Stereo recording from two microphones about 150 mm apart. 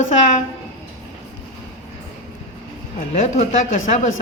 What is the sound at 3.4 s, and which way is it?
Speech, 55° left (ahead or behind).